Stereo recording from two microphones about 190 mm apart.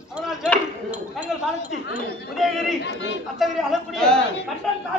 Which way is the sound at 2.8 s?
65° left (ahead or behind).